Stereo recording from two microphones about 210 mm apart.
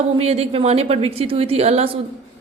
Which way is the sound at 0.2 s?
30° right (ahead or behind).